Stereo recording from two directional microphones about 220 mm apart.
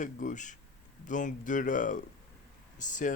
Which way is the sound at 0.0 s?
35° left (ahead or behind).